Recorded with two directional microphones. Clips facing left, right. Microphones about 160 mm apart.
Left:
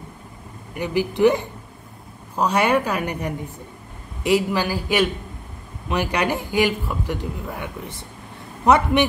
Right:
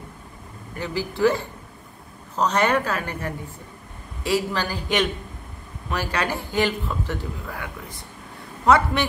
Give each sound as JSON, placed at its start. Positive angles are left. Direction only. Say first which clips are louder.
{"t": 0.7, "sound": "a man's voice", "louder": "left 5 dB", "side_deg": 15}
{"t": 7.4, "sound": "speech", "louder": "left 3 dB", "side_deg": 20}